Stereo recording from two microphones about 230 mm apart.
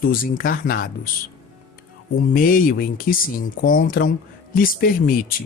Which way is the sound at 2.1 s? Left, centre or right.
Left.